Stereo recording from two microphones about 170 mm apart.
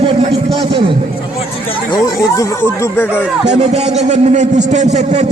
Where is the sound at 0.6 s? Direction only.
30° right (ahead or behind).